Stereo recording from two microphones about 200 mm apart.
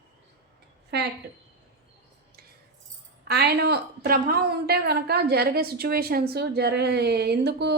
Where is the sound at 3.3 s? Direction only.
55° right (ahead or behind).